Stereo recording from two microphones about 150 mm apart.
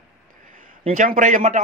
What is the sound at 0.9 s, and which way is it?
Speech, 65° right (ahead or behind).